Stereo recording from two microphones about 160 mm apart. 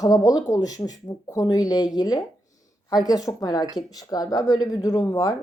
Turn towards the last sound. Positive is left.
turn(degrees=20)  # may be behind; listen again after turning